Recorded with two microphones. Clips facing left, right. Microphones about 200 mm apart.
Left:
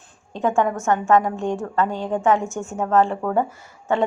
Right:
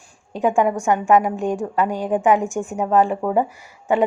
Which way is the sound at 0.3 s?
15° right (ahead or behind).